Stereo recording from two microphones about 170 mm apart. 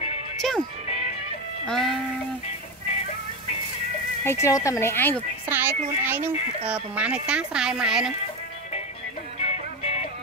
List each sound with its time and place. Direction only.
0.4 s speech: centre (ahead or behind)
1.7 s speech: centre (ahead or behind)
4.2 s speech: 15° left (ahead or behind)
5.5 s a child's voice: 10° right (ahead or behind)
9.4 s music: 40° left (ahead or behind)